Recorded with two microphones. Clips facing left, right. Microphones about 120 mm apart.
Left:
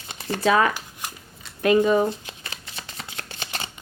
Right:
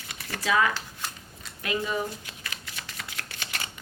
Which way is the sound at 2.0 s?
25° left (ahead or behind).